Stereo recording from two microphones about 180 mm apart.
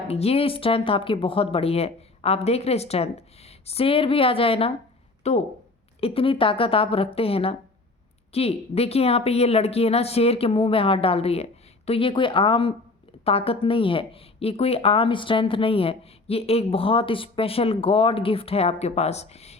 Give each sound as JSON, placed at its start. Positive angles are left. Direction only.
{"t": 0.1, "sound": "speech", "side_deg": 35}